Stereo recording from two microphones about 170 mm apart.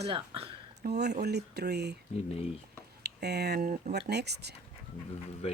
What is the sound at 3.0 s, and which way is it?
Speech, 75° right (ahead or behind).